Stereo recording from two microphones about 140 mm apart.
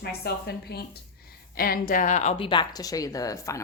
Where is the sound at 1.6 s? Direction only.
85° left; by 2.3 s 60° left (ahead or behind).